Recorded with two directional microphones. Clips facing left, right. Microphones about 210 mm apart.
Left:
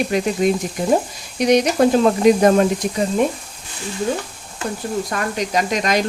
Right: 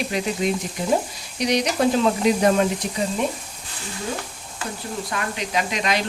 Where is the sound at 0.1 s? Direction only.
50° left (ahead or behind).